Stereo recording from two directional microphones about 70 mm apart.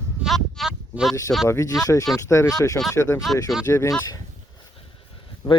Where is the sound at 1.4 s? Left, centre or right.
Left.